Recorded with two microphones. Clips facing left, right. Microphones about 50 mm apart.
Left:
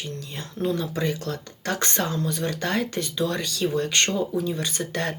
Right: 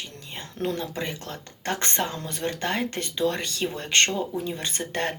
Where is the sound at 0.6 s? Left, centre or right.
Right.